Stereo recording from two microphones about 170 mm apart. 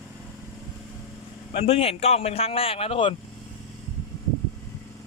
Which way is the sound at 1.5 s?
35° left (ahead or behind).